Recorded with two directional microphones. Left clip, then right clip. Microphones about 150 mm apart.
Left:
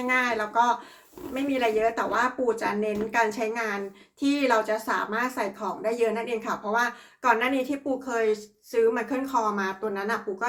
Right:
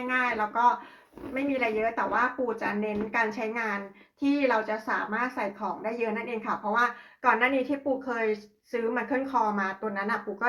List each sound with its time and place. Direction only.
0.1 s speech: 15° left (ahead or behind); by 10.2 s centre (ahead or behind)